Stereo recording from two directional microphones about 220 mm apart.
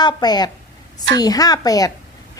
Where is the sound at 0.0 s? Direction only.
20° left (ahead or behind).